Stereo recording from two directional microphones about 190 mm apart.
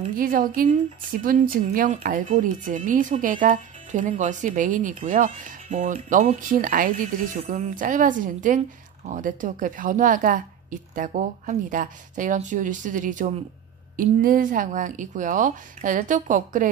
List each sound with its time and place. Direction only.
0.0 s a woman's voice: 45° right (ahead or behind)